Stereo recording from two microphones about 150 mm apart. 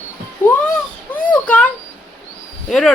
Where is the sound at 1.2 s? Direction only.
10° left (ahead or behind).